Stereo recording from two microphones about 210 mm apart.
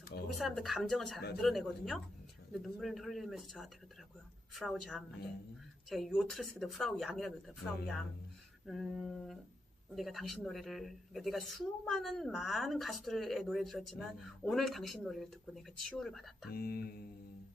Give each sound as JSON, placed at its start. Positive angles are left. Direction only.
{"t": 0.3, "sound": "a woman's voice", "side_deg": 0}
{"t": 16.5, "sound": "mantra", "side_deg": 45}